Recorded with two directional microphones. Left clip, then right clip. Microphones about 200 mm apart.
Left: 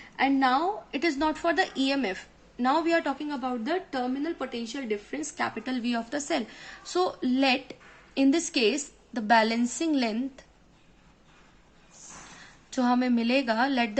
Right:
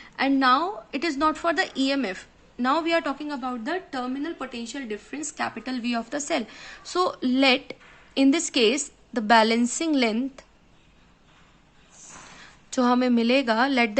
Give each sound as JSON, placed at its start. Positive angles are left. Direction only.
{"t": 0.0, "sound": "a woman's voice", "side_deg": -30}
{"t": 12.4, "sound": "a woman's voice", "side_deg": -25}